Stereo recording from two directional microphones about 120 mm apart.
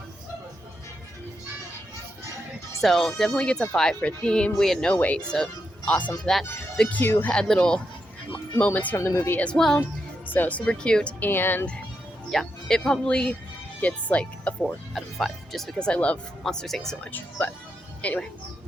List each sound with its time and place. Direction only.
2.8 s speech: 5° left (ahead or behind)
9.0 s speech: 25° left (ahead or behind)
9.4 s speech: 5° left (ahead or behind)
12.3 s speech: 5° left (ahead or behind)